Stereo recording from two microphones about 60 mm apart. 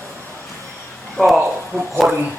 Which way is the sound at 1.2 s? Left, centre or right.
Centre.